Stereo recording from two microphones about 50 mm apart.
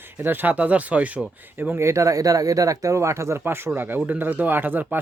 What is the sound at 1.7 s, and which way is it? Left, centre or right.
Speech, right.